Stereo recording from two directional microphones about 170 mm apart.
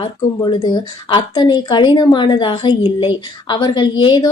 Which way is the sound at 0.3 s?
25° left (ahead or behind).